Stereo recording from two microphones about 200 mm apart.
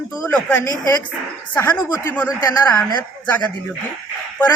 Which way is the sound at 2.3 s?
20° left (ahead or behind).